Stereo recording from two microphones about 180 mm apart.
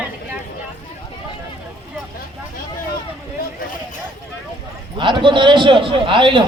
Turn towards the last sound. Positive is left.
turn(degrees=-30)  # may be behind; listen again after turning